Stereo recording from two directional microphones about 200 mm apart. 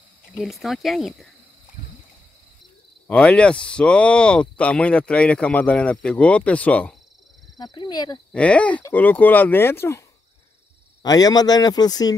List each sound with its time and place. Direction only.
0.4 s speech: centre (ahead or behind)
3.1 s speech: 5° left (ahead or behind)
7.5 s speech: 20° left (ahead or behind)
8.3 s speech: 5° left (ahead or behind)